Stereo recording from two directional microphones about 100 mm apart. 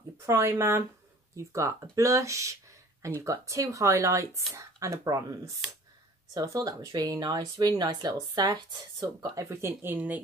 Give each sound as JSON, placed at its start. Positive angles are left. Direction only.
{"t": 0.3, "sound": "speech", "side_deg": -25}